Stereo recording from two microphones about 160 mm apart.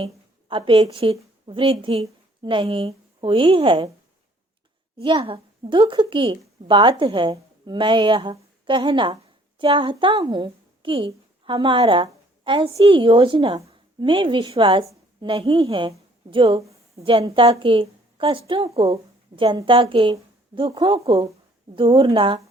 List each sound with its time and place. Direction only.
0.0 s a woman's voice: 35° right (ahead or behind)
4.9 s a woman's voice: 35° right (ahead or behind)